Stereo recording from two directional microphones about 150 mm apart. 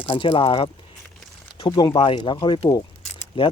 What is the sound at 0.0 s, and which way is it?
Speech, 35° left (ahead or behind).